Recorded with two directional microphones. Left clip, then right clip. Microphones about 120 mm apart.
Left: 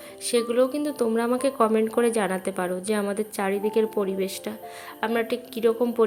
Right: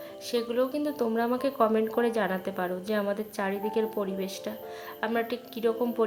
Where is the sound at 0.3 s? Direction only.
25° left (ahead or behind).